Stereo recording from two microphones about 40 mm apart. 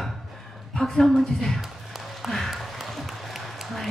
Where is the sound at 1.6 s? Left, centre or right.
Centre.